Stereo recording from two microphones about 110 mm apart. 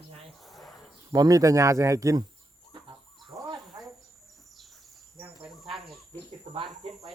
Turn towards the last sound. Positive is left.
turn(degrees=-55)  # may be behind; listen again after turning